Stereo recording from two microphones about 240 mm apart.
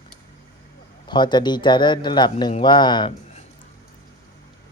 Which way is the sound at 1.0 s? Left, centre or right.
Centre.